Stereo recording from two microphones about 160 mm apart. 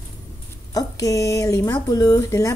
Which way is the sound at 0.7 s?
20° left (ahead or behind).